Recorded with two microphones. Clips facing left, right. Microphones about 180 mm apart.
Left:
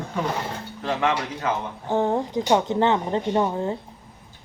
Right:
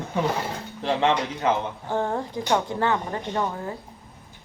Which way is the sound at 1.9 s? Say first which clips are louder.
Left 5 dB; 15° left (ahead or behind).